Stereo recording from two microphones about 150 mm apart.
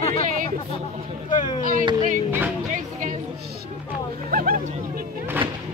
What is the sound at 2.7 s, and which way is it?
Music, 60° right (ahead or behind).